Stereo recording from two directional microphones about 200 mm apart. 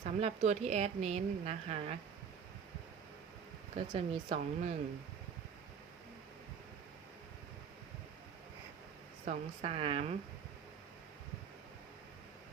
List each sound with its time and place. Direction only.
0.0 s speech: 35° right (ahead or behind)
3.8 s speech: 30° right (ahead or behind)
9.2 s speech: 40° right (ahead or behind)